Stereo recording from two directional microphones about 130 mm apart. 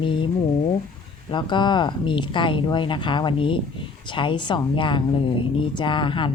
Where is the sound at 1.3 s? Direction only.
35° left (ahead or behind).